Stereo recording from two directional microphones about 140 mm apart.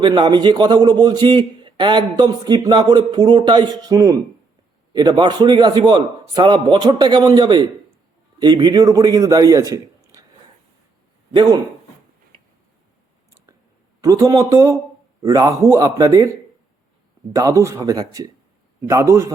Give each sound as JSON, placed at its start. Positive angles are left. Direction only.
{"t": 0.0, "sound": "a man's voice", "side_deg": -35}
{"t": 11.3, "sound": "a man's voice", "side_deg": -30}
{"t": 14.0, "sound": "a man's voice", "side_deg": -25}
{"t": 17.3, "sound": "a man's voice", "side_deg": -25}